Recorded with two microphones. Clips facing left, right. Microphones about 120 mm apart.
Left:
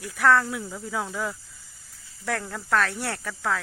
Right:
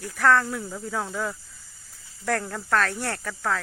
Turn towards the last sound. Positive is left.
turn(degrees=0)  # may be behind; listen again after turning